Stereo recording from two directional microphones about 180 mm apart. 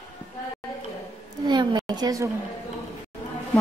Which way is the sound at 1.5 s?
25° right (ahead or behind).